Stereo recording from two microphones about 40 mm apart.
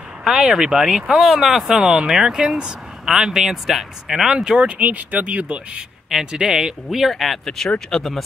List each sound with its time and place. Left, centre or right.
0.2 s speech: centre
1.8 s speech: right
2.0 s speech: centre
4.7 s speech: right
6.3 s speech: centre
6.9 s speech: centre
7.4 s speech: centre
8.0 s speech: centre